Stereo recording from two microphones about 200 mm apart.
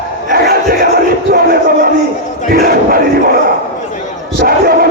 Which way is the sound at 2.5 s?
50° right (ahead or behind).